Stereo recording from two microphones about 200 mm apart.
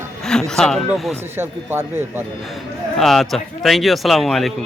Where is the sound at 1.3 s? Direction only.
10° right (ahead or behind).